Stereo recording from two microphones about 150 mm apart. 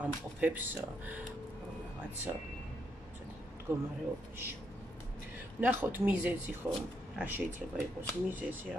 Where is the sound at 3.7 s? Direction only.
20° right (ahead or behind).